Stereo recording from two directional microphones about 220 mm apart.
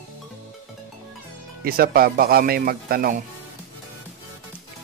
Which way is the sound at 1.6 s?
45° right (ahead or behind).